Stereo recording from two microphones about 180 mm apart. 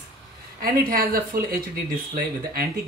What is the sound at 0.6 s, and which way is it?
Speech, 55° right (ahead or behind).